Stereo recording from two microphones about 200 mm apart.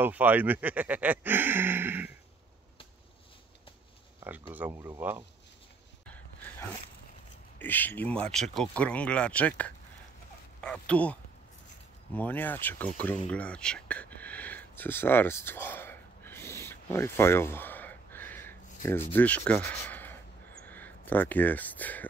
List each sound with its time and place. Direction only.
0.0 s speech: 10° right (ahead or behind)
4.2 s speech: 10° right (ahead or behind)
6.0 s a sound: 10° left (ahead or behind)
7.5 s speech: 10° left (ahead or behind)
13.3 s whispering: 5° left (ahead or behind)
19.1 s speech: 5° left (ahead or behind)